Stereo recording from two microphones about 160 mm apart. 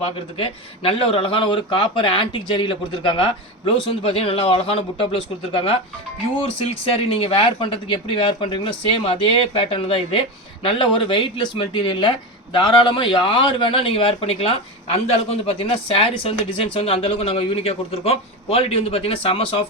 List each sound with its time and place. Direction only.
0.0 s speech: 35° left (ahead or behind)